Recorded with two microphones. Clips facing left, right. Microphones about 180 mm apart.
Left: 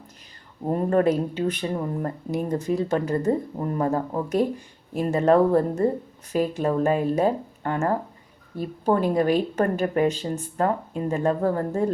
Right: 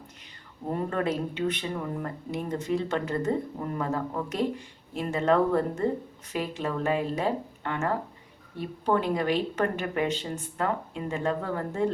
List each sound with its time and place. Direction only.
0.6 s speech: 40° left (ahead or behind)